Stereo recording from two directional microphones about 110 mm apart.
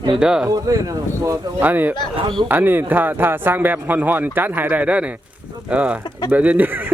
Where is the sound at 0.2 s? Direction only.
5° right (ahead or behind).